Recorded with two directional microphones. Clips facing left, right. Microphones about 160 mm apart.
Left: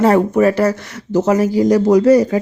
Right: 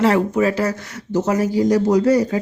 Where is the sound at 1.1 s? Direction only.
90° left.